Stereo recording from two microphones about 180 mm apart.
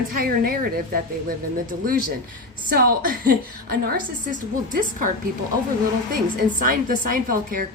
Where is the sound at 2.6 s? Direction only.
55° right (ahead or behind).